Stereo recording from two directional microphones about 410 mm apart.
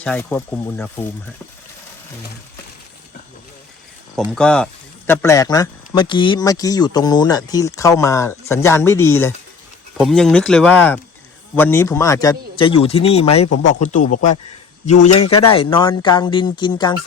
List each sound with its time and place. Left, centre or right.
0.0 s speech: centre
4.1 s speech: centre